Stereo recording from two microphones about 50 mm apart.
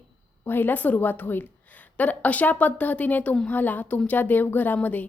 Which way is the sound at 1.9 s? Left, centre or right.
Left.